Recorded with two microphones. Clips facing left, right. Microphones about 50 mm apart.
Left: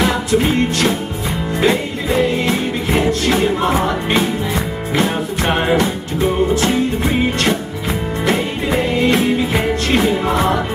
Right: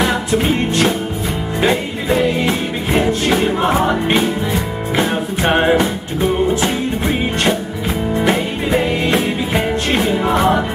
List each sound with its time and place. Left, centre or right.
0.4 s music: centre
8.6 s music: centre